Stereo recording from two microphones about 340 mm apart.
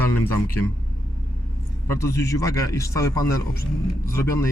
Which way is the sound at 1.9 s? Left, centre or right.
Centre.